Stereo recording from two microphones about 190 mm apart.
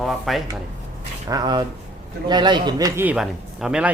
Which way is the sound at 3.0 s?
5° right (ahead or behind).